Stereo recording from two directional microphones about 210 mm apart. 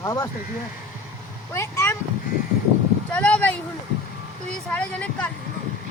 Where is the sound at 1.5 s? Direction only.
15° left (ahead or behind).